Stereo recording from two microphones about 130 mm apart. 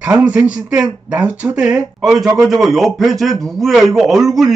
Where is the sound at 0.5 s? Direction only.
10° right (ahead or behind).